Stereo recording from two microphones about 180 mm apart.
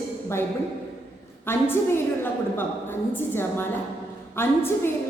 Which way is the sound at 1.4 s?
15° left (ahead or behind).